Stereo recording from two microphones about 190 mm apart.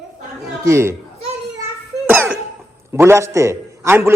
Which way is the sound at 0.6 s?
15° right (ahead or behind).